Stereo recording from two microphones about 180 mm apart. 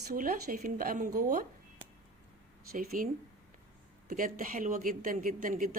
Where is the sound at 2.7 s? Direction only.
55° right (ahead or behind).